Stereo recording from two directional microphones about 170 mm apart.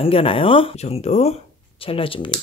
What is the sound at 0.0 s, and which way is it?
A man's voice, 35° left (ahead or behind).